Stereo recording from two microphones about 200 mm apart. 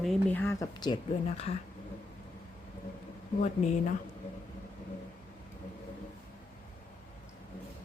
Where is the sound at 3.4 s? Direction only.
35° left (ahead or behind).